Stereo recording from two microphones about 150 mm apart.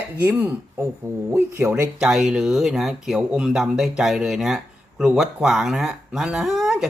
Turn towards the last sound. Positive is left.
turn(degrees=-5)  # may be behind; listen again after turning